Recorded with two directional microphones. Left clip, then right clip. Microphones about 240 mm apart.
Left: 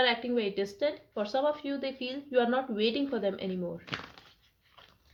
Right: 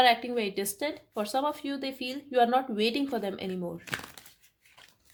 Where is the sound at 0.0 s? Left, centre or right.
Right.